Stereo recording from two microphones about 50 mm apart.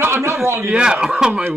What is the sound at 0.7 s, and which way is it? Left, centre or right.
Speech, centre.